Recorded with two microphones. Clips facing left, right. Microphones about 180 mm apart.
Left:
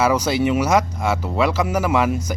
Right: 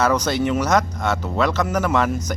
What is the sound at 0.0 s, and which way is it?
Speech, 5° left (ahead or behind).